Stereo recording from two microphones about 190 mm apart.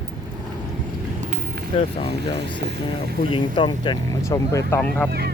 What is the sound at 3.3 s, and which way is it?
Speech, 25° left (ahead or behind).